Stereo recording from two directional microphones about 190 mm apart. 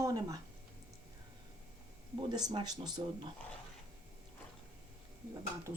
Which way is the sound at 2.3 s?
20° right (ahead or behind).